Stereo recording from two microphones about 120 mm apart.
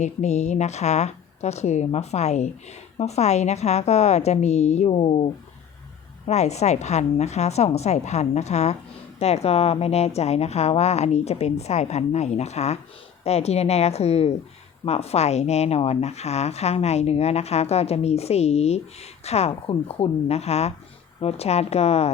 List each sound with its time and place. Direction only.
0.0 s a woman's voice: 75° left (ahead or behind)